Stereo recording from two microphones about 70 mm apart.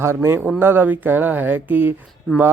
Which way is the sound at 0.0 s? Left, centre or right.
Right.